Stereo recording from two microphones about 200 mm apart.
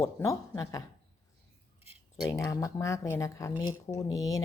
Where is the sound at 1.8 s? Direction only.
20° left (ahead or behind).